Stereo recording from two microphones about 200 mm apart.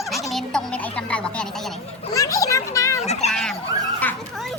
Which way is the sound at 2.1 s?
15° left (ahead or behind).